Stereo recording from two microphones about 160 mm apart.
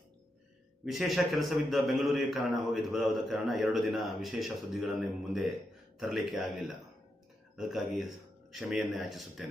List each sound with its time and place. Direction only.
0.9 s a man's voice: centre (ahead or behind)